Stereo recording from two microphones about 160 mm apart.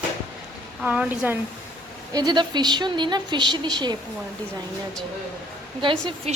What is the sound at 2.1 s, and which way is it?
A woman's voice, 25° right (ahead or behind).